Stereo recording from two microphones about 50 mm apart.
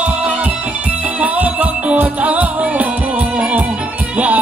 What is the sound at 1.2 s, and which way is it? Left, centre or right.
Music, right.